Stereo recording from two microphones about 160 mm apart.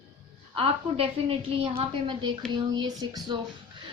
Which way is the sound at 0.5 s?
35° right (ahead or behind).